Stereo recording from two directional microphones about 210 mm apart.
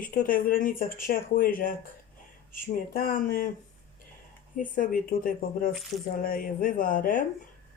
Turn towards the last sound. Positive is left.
turn(degrees=40)  # may be behind; listen again after turning